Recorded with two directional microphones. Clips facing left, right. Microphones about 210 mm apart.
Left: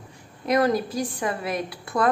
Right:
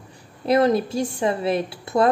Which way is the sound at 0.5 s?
25° right (ahead or behind).